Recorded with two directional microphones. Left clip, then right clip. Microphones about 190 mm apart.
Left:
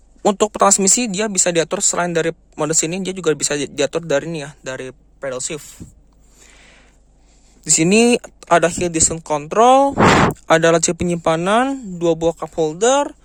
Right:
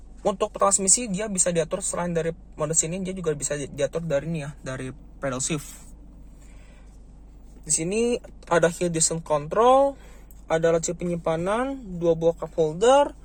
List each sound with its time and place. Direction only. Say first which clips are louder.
0.2 s speech: left 8 dB; 70° left (ahead or behind)
4.6 s speech: left 7 dB; 40° left (ahead or behind)
5.2 s speech: left 4 dB; 25° left (ahead or behind)
7.6 s speech: left 11 dB; 50° left (ahead or behind); by 13.1 s 35° left (ahead or behind)